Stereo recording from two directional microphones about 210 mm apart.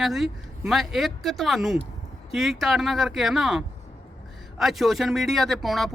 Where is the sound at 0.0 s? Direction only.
Centre (ahead or behind).